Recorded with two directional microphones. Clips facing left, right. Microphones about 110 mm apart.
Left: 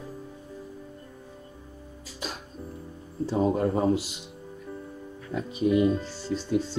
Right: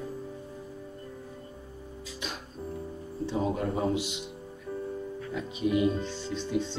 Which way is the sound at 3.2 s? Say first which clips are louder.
Left 5 dB; 45° left (ahead or behind).